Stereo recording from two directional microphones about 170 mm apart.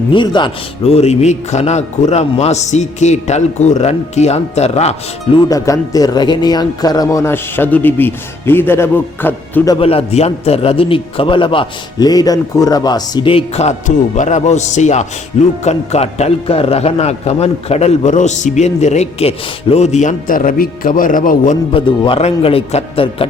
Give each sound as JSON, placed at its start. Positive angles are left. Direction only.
{"t": 0.1, "sound": "speech", "side_deg": 25}
{"t": 9.8, "sound": "a man's voice", "side_deg": 35}
{"t": 21.7, "sound": "a man's voice", "side_deg": 30}